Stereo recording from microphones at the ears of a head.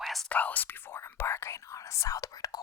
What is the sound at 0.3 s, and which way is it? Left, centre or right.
Speech, left.